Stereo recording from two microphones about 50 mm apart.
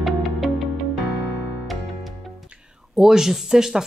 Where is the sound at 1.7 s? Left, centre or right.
Centre.